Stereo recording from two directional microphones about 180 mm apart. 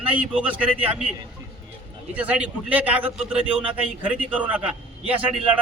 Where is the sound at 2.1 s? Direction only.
10° right (ahead or behind).